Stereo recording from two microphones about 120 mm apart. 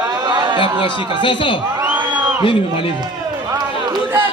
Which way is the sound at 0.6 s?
45° left (ahead or behind).